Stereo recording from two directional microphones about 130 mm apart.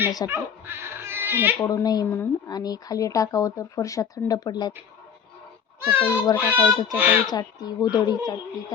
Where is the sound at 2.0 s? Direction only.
15° left (ahead or behind).